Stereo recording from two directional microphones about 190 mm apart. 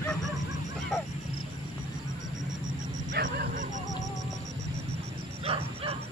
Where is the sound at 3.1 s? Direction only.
50° right (ahead or behind).